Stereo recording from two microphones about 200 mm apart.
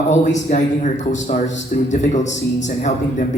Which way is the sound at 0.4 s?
40° left (ahead or behind).